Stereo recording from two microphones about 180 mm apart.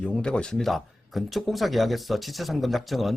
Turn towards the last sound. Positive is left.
turn(degrees=0)  # may be behind; listen again after turning